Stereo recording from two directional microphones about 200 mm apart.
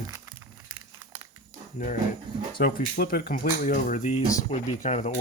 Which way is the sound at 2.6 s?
45° left (ahead or behind).